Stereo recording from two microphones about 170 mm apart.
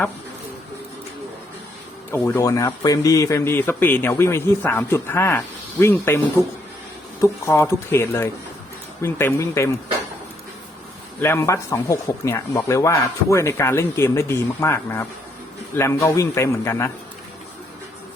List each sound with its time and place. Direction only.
2.1 s speech: 15° left (ahead or behind)
11.2 s speech: 15° left (ahead or behind)